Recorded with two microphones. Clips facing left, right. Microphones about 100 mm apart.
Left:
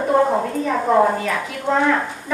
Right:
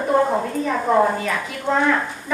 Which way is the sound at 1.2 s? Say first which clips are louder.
Left 1 dB; 45° left (ahead or behind).